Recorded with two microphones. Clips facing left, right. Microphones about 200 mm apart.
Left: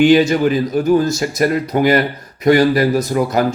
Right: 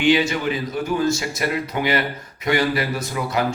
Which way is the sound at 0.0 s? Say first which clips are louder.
Left 7 dB; 40° left (ahead or behind).